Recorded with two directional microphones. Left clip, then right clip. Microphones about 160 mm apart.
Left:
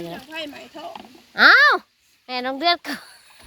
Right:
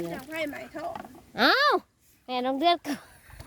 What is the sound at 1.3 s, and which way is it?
Speech, 15° right (ahead or behind).